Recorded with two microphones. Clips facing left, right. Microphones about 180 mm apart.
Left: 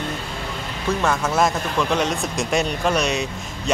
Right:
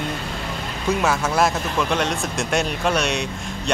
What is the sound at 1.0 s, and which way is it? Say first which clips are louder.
Speech: left 1 dB; 5° right (ahead or behind).